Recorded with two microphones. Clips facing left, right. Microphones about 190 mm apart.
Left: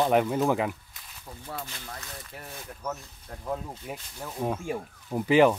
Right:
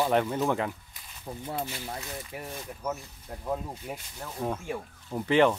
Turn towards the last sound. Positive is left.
turn(degrees=10)  # may be behind; listen again after turning